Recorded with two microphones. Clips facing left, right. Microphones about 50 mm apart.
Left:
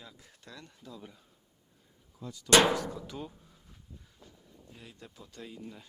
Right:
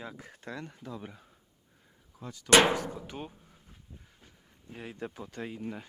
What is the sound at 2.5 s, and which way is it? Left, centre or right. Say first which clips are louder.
Speech: right 1 dB; right.